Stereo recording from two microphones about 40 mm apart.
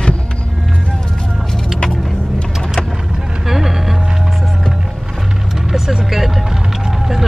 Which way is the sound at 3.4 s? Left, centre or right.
Centre.